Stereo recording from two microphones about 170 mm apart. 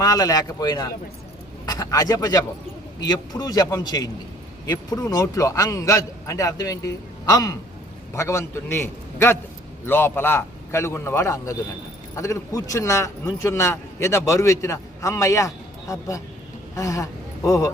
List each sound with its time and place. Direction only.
0.0 s a man's voice: 20° left (ahead or behind)